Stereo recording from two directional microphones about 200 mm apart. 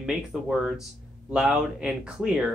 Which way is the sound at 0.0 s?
5° right (ahead or behind).